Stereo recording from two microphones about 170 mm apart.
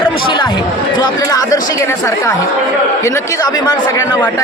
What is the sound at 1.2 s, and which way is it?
A man's voice, 20° left (ahead or behind).